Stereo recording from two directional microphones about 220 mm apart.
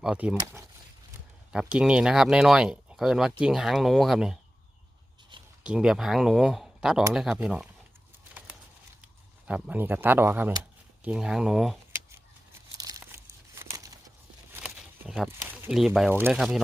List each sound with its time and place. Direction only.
0.0 s speech: 5° right (ahead or behind)
5.3 s a sound: 20° right (ahead or behind)
5.6 s speech: 5° right (ahead or behind)
9.5 s speech: 5° right (ahead or behind)
12.7 s crumpling: 15° right (ahead or behind)
14.5 s speech: 5° right (ahead or behind)